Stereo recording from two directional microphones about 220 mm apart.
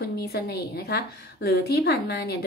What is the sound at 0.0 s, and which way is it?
A woman's voice, 45° left (ahead or behind).